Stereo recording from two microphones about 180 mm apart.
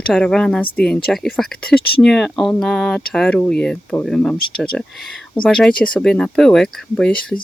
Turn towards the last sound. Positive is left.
turn(degrees=5)  # may be behind; listen again after turning